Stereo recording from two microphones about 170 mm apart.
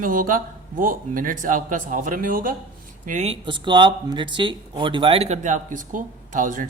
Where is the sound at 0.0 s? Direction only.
55° right (ahead or behind).